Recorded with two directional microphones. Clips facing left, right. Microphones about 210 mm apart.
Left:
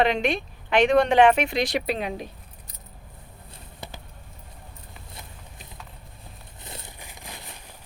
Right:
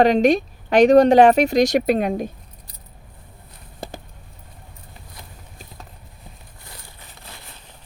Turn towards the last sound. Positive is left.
turn(degrees=15)  # may be behind; listen again after turning